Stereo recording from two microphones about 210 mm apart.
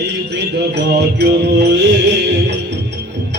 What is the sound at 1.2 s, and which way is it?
Music, 55° right (ahead or behind).